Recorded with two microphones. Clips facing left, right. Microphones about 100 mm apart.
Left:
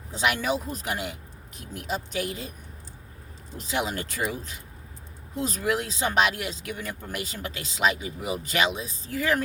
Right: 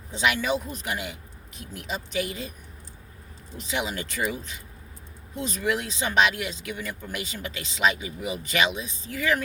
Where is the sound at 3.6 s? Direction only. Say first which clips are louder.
Left 1 dB; 40° left (ahead or behind).